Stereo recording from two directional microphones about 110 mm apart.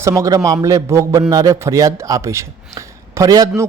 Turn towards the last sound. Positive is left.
turn(degrees=-35)  # may be behind; listen again after turning